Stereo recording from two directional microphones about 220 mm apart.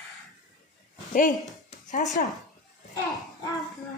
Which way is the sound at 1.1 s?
35° left (ahead or behind).